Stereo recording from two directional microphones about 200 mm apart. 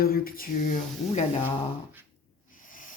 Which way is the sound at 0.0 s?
45° left (ahead or behind).